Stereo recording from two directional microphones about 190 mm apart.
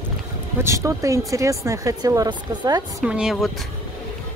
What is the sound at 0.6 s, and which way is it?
Speech, 15° right (ahead or behind).